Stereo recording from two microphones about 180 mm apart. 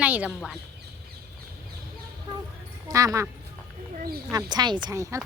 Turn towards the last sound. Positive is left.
turn(degrees=-15)  # may be behind; listen again after turning